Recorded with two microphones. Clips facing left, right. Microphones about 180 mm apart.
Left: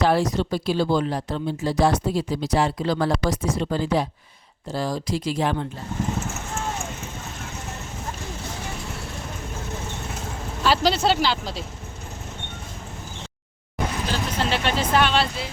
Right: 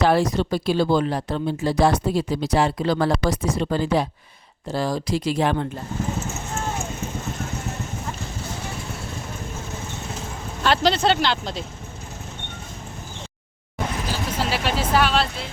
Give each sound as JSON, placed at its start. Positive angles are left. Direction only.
{"t": 0.0, "sound": "speech", "side_deg": -60}
{"t": 10.6, "sound": "speech", "side_deg": 5}
{"t": 14.1, "sound": "speech", "side_deg": -5}